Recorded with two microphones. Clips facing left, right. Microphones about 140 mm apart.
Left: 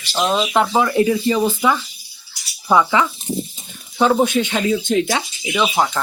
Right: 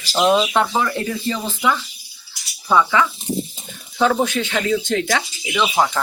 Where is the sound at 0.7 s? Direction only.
15° left (ahead or behind).